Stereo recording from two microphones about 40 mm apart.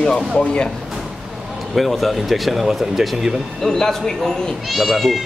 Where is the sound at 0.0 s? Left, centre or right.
Left.